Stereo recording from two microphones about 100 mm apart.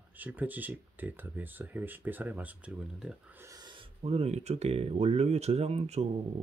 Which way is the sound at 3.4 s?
35° right (ahead or behind).